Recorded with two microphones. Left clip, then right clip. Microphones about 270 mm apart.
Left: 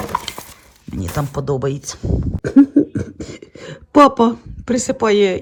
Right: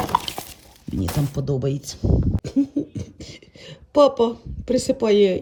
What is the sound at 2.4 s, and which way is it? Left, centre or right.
Cough, left.